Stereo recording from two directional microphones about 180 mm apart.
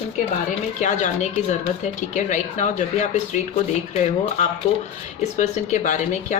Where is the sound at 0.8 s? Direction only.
40° left (ahead or behind).